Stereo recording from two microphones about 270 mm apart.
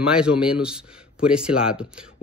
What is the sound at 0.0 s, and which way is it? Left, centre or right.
Speech, centre.